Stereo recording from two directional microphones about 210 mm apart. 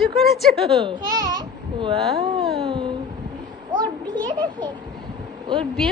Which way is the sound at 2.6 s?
25° right (ahead or behind).